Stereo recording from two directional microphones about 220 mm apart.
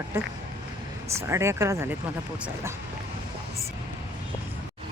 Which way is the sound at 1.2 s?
10° right (ahead or behind).